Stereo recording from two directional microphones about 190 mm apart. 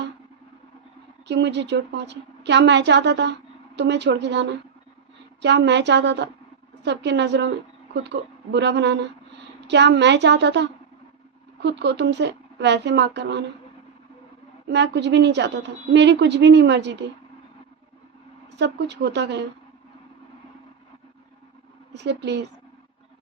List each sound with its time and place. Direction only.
1.3 s a woman's voice: 65° right (ahead or behind)
8.5 s a woman's voice: 65° right (ahead or behind)
14.7 s a woman's voice: 65° right (ahead or behind)
18.6 s a woman's voice: 65° right (ahead or behind)
21.9 s a woman's voice: 65° right (ahead or behind)